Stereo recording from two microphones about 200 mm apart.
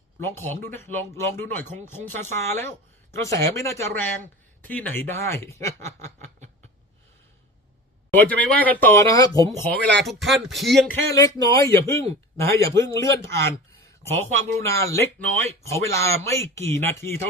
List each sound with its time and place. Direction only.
0.3 s speech: 10° left (ahead or behind)
8.1 s speech: 10° left (ahead or behind)
10.0 s speech: centre (ahead or behind)
11.1 s speech: 20° left (ahead or behind)